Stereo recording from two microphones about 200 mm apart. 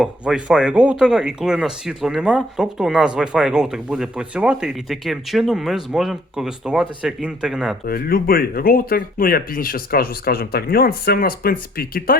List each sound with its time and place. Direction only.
0.0 s speech: 5° right (ahead or behind)
7.9 s speech: 50° left (ahead or behind)